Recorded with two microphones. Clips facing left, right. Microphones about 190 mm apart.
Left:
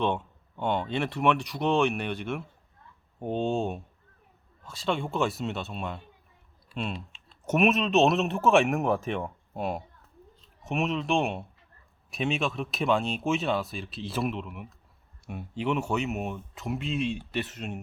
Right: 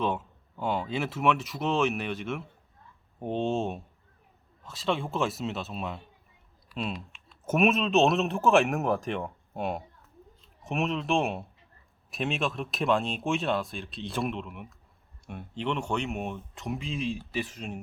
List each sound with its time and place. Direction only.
0.0 s speech: 5° right (ahead or behind)
6.9 s typing: 30° left (ahead or behind)
7.4 s speech: centre (ahead or behind)